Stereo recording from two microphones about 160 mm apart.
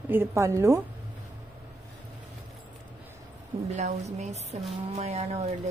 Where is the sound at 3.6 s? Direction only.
45° right (ahead or behind).